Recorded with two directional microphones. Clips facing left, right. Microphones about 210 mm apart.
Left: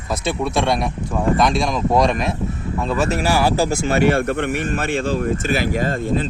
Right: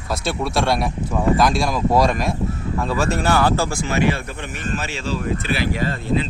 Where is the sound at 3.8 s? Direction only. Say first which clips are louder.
Left 4 dB; 50° left (ahead or behind).